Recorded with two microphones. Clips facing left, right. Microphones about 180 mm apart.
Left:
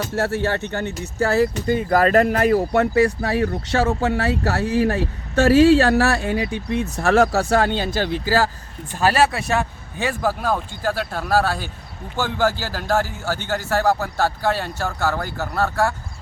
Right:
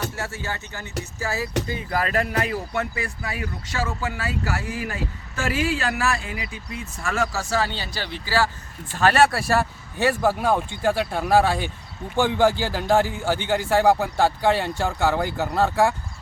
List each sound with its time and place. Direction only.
0.2 s speech: 65° left (ahead or behind)
1.6 s speech: 50° left (ahead or behind)
3.2 s speech: 60° left (ahead or behind); by 8.4 s 45° left (ahead or behind)
8.9 s speech: 10° left (ahead or behind)
9.3 s a man's voice: 5° right (ahead or behind)